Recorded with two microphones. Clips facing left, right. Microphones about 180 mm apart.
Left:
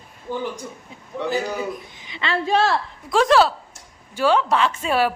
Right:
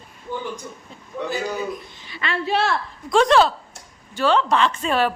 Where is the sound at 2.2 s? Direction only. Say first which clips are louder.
Left 2 dB; 35° left (ahead or behind).